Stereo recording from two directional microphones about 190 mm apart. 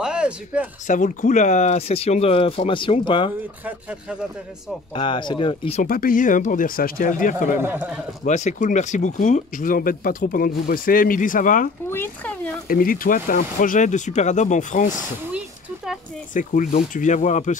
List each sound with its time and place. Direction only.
0.0 s a sound: 5° right (ahead or behind)
0.8 s speech: 40° left (ahead or behind); by 3.3 s 25° left (ahead or behind)
3.6 s speech: 5° right (ahead or behind)
4.9 s speech: 25° left (ahead or behind)
5.8 s speech: 50° left (ahead or behind)
7.6 s a man's voice: 10° right (ahead or behind)
8.3 s speech: 40° left (ahead or behind)
11.9 s speech: 10° left (ahead or behind)
12.6 s speech: 50° left (ahead or behind)
15.3 s a sound: 5° right (ahead or behind)
16.3 s speech: 40° left (ahead or behind)